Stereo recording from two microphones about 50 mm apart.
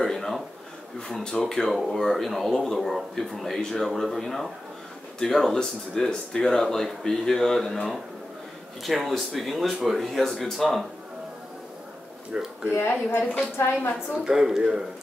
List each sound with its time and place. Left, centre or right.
0.0 s speech: centre
12.3 s speech: centre
12.7 s speech: left
13.9 s speech: centre